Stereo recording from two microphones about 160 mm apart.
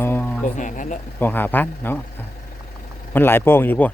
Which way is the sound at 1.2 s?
10° left (ahead or behind).